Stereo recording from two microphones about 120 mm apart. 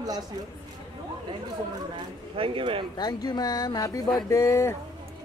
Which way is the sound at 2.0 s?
45° right (ahead or behind).